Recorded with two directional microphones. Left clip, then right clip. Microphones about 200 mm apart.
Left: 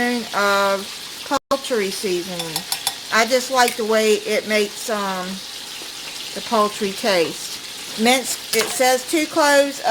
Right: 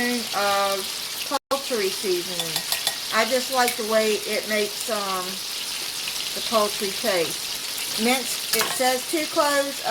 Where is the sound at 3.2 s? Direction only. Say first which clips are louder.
Left 5 dB; 45° left (ahead or behind).